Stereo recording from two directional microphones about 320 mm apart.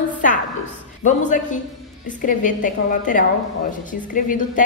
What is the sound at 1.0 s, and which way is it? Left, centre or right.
A woman's voice, left.